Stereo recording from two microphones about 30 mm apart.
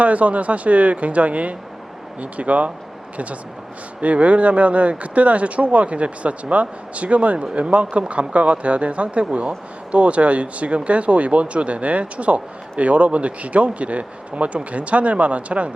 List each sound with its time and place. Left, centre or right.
0.0 s speech: right
4.0 s speech: right